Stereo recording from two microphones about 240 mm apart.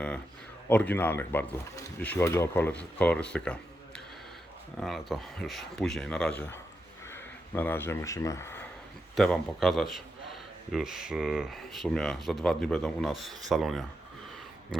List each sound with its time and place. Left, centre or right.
0.7 s speech: centre